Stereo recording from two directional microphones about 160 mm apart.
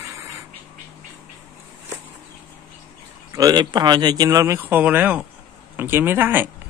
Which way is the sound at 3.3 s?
25° right (ahead or behind).